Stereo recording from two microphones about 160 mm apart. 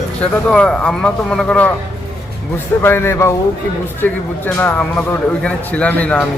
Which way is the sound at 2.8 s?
15° left (ahead or behind).